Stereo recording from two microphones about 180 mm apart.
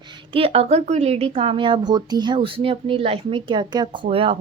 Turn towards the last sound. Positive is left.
turn(degrees=-30)  # may be behind; listen again after turning